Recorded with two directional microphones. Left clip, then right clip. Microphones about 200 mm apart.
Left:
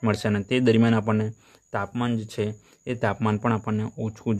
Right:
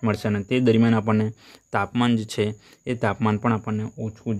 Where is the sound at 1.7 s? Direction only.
20° right (ahead or behind).